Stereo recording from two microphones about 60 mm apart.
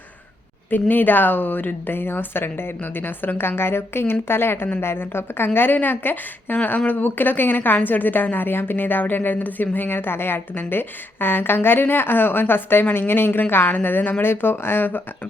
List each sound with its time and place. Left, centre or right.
0.7 s a woman's voice: left